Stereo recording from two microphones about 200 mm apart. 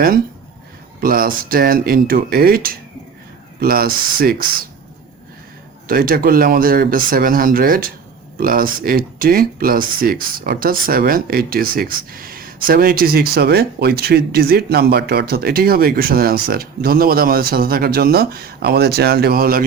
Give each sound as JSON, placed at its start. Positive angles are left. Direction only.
{"t": 1.0, "sound": "speech", "side_deg": -45}
{"t": 5.9, "sound": "speech", "side_deg": -45}